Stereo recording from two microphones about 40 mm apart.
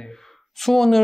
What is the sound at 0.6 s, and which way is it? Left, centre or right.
Speech, centre.